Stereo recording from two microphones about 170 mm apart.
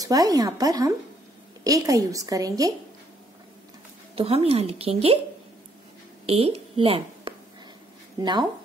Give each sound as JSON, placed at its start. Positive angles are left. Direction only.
{"t": 0.0, "sound": "a woman's voice", "side_deg": -20}
{"t": 4.1, "sound": "a woman's voice", "side_deg": -35}
{"t": 6.2, "sound": "a woman's voice", "side_deg": -35}